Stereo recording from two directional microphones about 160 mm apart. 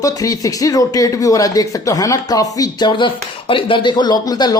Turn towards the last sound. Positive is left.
turn(degrees=25)  # may be behind; listen again after turning